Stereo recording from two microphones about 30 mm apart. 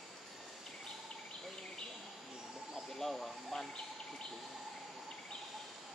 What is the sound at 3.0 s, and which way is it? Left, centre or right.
Snake, centre.